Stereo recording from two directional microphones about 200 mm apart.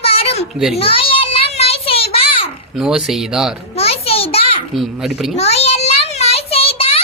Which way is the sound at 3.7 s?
30° left (ahead or behind).